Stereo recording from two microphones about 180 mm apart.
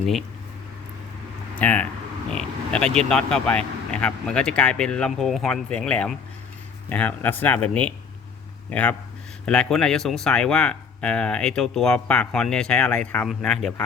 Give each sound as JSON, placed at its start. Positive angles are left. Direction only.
{"t": 0.0, "sound": "speech", "side_deg": 0}
{"t": 1.5, "sound": "speech", "side_deg": 10}